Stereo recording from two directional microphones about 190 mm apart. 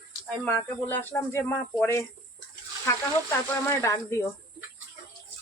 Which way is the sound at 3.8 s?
15° left (ahead or behind).